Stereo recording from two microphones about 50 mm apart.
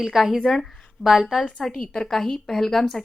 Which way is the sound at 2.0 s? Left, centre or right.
Centre.